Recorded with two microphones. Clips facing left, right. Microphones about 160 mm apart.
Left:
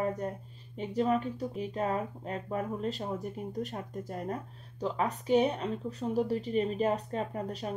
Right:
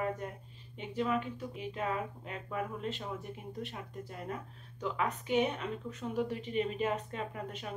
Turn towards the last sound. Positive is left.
turn(degrees=35)  # may be behind; listen again after turning